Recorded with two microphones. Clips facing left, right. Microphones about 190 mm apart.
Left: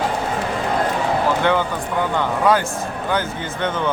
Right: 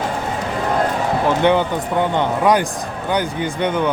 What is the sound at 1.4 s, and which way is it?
Speech, 20° right (ahead or behind).